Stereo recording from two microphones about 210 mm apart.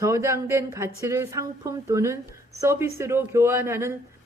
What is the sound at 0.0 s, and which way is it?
A woman's voice, 15° right (ahead or behind).